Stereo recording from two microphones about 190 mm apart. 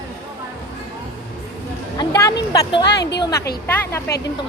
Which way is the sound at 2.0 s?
20° left (ahead or behind).